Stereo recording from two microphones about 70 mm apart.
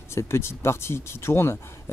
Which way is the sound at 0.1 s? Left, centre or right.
Left.